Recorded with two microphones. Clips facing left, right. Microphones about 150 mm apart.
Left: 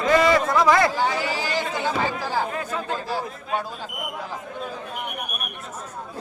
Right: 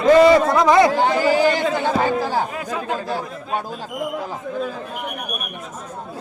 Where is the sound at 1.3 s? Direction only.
50° right (ahead or behind).